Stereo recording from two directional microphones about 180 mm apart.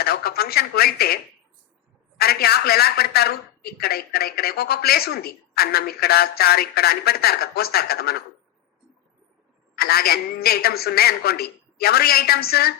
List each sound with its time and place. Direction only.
0.0 s speech: 60° left (ahead or behind)
9.7 s speech: 60° left (ahead or behind)